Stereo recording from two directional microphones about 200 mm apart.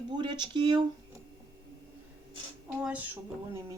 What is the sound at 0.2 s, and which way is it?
Speech, 25° right (ahead or behind).